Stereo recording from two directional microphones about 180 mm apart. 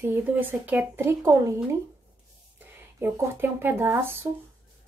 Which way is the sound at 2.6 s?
10° right (ahead or behind).